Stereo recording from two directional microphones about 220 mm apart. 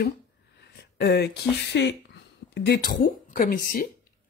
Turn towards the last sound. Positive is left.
turn(degrees=40)  # may be behind; listen again after turning